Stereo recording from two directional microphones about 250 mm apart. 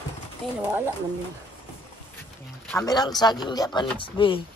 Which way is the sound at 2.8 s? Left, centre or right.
Centre.